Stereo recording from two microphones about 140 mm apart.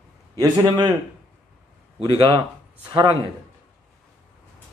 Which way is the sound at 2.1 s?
35° right (ahead or behind).